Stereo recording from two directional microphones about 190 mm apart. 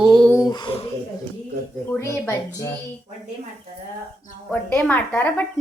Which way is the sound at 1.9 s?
15° left (ahead or behind).